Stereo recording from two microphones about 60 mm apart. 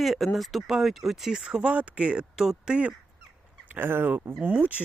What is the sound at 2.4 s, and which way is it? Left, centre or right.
Speech, centre.